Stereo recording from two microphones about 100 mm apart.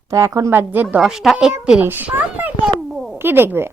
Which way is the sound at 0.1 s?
30° right (ahead or behind).